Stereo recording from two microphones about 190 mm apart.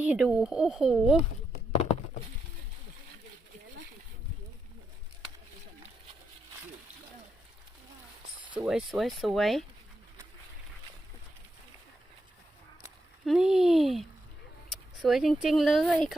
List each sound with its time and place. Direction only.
0.0 s speech: 5° right (ahead or behind)
8.5 s speech: 5° right (ahead or behind)
13.2 s speech: centre (ahead or behind)